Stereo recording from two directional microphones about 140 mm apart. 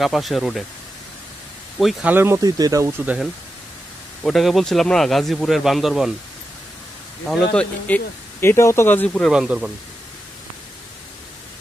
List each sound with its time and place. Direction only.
0.0 s speech: centre (ahead or behind)
1.8 s speech: 5° right (ahead or behind); by 3.0 s 25° right (ahead or behind)
4.2 s speech: centre (ahead or behind)
7.2 s speech: 5° left (ahead or behind)
9.3 s speech: 5° right (ahead or behind)